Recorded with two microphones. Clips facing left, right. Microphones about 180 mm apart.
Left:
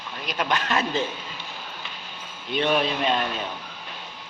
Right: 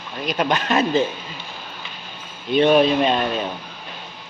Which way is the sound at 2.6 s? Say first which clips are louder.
Right 8 dB; 20° right (ahead or behind).